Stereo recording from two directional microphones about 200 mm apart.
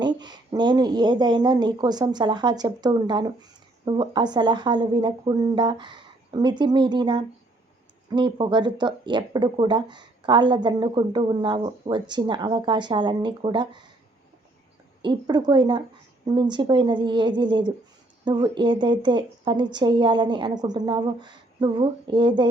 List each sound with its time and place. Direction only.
0.0 s speech: 20° right (ahead or behind)
15.0 s speech: 20° right (ahead or behind)